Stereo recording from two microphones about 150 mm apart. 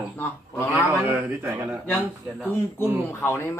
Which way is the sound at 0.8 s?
10° right (ahead or behind).